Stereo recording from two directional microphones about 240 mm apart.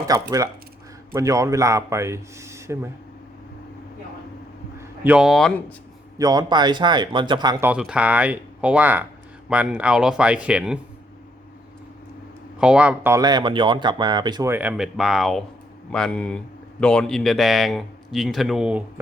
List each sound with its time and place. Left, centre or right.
0.1 s speech: centre
4.8 s speech: centre
6.1 s speech: centre
7.7 s speech: centre
12.5 s speech: centre